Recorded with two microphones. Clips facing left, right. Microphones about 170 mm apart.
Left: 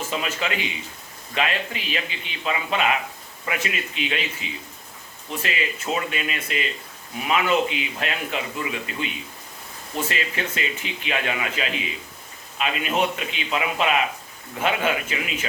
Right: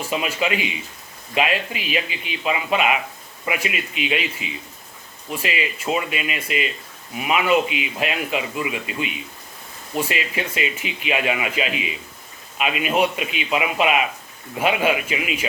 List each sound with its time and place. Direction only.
0.1 s a man's voice: 10° right (ahead or behind)
4.4 s speech: 30° left (ahead or behind)
5.4 s a man's voice: 10° right (ahead or behind)
10.1 s a man's voice: 10° right (ahead or behind)